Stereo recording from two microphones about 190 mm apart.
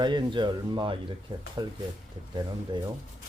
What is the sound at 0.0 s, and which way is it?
Speech, 25° right (ahead or behind).